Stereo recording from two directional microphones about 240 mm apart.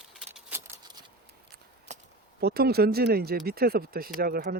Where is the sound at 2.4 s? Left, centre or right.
Right.